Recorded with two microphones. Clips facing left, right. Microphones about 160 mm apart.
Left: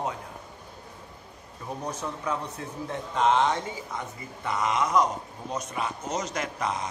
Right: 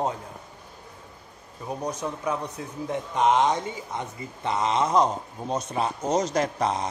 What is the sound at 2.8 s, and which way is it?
Speech, 15° right (ahead or behind).